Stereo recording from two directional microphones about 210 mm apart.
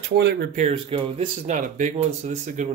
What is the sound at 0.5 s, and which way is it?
Speech, 30° right (ahead or behind).